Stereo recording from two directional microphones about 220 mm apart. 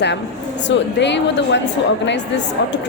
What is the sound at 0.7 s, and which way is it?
Speech, 55° left (ahead or behind).